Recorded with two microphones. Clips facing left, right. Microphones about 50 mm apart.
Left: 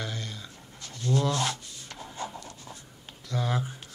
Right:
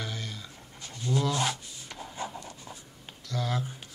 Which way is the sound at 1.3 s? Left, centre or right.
Centre.